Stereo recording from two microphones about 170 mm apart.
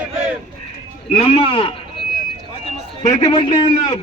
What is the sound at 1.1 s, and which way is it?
Speech, 35° left (ahead or behind).